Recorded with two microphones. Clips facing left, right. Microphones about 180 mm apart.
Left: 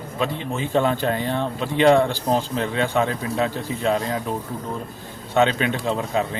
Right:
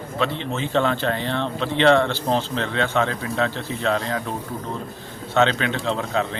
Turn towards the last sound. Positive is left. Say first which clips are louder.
# left 1 dB
turn(degrees=15)  # may be behind; listen again after turning